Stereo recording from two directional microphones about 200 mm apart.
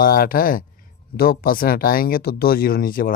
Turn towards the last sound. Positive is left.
turn(degrees=45)  # may be behind; listen again after turning